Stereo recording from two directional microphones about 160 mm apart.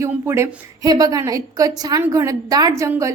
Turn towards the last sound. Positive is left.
turn(degrees=-20)  # may be behind; listen again after turning